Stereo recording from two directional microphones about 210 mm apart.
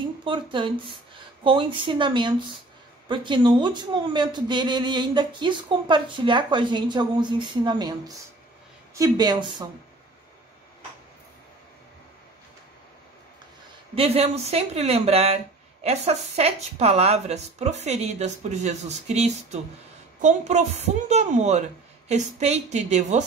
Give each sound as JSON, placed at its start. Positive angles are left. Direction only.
{"t": 0.2, "sound": "speech", "side_deg": -25}
{"t": 8.9, "sound": "speech", "side_deg": -20}
{"t": 13.9, "sound": "speech", "side_deg": -30}